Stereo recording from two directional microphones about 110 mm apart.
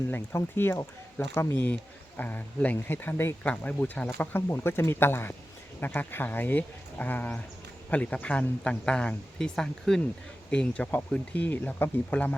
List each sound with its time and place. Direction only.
0.1 s speech: 20° left (ahead or behind)